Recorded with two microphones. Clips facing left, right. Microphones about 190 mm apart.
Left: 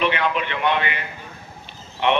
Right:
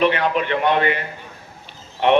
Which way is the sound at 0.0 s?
40° right (ahead or behind).